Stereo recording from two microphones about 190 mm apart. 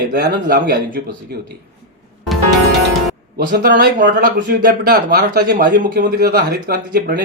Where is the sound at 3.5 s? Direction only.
50° right (ahead or behind).